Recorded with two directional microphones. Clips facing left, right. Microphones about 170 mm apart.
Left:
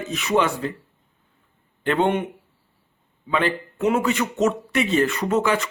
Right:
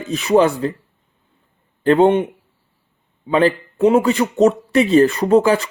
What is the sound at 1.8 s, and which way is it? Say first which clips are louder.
Speech: right 8 dB; 35° right (ahead or behind).